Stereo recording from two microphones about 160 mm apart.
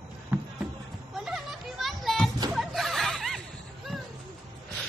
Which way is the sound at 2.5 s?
Centre (ahead or behind).